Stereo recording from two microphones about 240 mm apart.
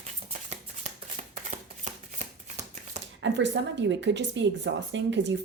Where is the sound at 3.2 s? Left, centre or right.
Right.